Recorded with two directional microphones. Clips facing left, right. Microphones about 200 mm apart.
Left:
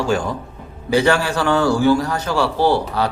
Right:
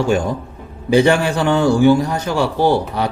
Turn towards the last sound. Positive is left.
turn(degrees=-15)  # may be behind; listen again after turning